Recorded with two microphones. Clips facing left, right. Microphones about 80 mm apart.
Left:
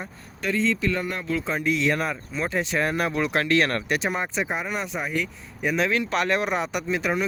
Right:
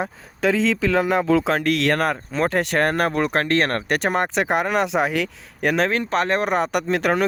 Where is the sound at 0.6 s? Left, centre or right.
Right.